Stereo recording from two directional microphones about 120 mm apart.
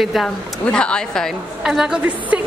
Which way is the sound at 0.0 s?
Centre (ahead or behind).